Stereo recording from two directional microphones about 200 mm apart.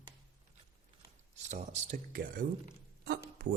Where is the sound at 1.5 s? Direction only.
35° right (ahead or behind).